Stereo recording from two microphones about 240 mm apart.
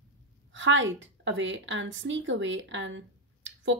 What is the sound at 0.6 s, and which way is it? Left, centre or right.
Speech, right.